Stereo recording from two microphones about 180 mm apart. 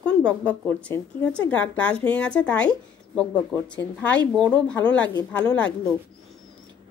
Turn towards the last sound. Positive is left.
turn(degrees=5)  # may be behind; listen again after turning